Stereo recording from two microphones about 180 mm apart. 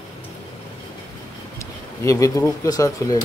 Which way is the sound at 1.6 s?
15° left (ahead or behind).